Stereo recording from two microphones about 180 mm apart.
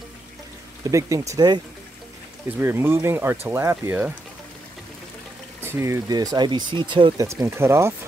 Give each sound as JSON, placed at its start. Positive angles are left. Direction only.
{"t": 0.8, "sound": "speech", "side_deg": -20}
{"t": 2.6, "sound": "speech", "side_deg": -15}
{"t": 5.6, "sound": "speech", "side_deg": -15}
{"t": 7.2, "sound": "speech", "side_deg": -15}